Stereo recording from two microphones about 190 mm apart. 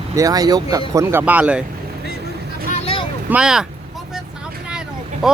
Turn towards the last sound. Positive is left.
turn(degrees=0)  # may be behind; listen again after turning